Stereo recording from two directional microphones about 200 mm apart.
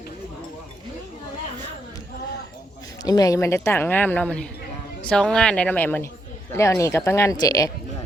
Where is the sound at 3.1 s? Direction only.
20° left (ahead or behind).